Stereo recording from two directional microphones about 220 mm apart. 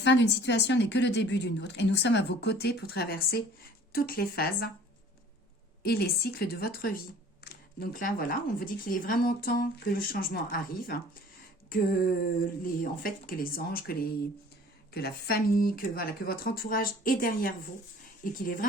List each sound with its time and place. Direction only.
0.0 s a woman's voice: 50° left (ahead or behind)
5.8 s a woman's voice: 45° left (ahead or behind)
14.9 s speech: 45° left (ahead or behind)